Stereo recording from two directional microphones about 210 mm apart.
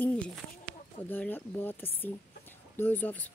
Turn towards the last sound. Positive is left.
turn(degrees=10)  # may be behind; listen again after turning